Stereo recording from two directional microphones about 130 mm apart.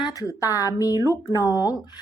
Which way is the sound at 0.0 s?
25° left (ahead or behind).